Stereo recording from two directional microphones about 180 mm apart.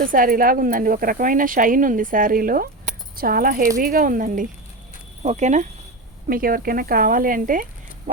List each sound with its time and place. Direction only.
0.0 s speech: 50° right (ahead or behind)
6.2 s speech: 55° right (ahead or behind)